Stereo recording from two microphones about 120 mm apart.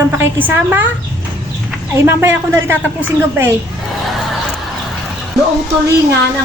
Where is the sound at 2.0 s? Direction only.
20° right (ahead or behind).